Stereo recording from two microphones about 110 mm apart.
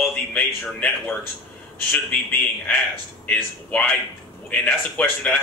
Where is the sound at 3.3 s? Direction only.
10° left (ahead or behind).